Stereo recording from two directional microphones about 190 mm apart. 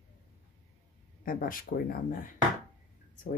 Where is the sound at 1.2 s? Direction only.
50° left (ahead or behind).